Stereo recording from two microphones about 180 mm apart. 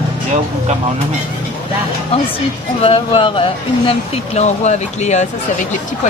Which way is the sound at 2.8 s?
30° left (ahead or behind).